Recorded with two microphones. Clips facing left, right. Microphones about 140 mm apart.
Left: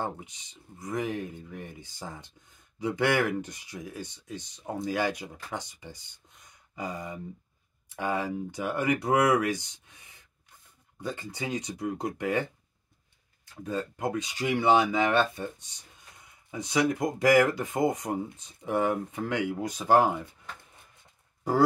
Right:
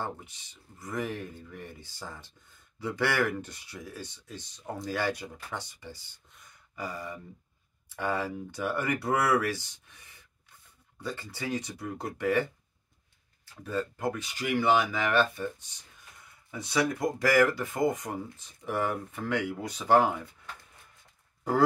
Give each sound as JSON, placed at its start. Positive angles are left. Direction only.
{"t": 0.0, "sound": "speech", "side_deg": 20}
{"t": 13.7, "sound": "speech", "side_deg": 20}